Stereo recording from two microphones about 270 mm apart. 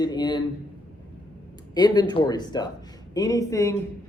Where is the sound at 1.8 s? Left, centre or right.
Centre.